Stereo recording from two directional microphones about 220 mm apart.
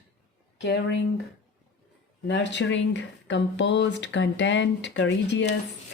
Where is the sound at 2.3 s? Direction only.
55° left (ahead or behind).